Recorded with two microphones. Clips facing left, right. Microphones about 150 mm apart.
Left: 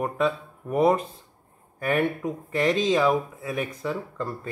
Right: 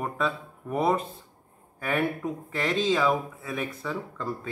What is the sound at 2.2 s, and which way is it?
Speech, centre (ahead or behind).